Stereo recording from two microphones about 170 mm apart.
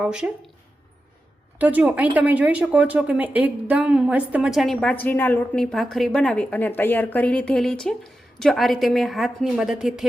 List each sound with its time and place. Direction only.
0.0 s speech: 5° right (ahead or behind)
1.5 s speech: 10° right (ahead or behind)